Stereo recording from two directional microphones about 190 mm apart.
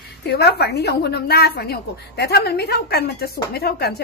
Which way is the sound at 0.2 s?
60° left (ahead or behind).